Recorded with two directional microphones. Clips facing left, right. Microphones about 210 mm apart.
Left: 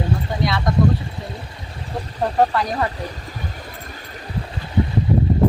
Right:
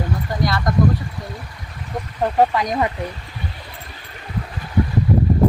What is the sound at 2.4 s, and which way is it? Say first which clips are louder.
Speech: right 1 dB; 10° right (ahead or behind).